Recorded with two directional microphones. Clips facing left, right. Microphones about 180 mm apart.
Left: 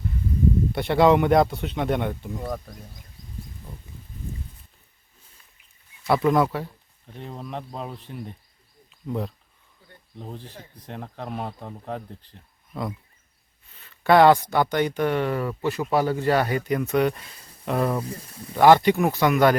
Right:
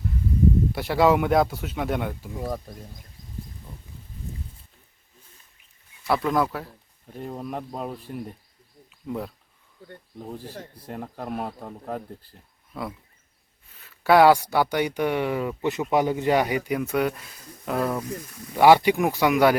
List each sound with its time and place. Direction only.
0.7 s speech: centre (ahead or behind)
6.1 s speech: centre (ahead or behind)
18.0 s speech: 30° left (ahead or behind)
18.5 s speech: 10° right (ahead or behind)